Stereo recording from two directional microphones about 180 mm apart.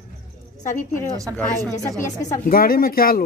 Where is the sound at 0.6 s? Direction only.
40° left (ahead or behind).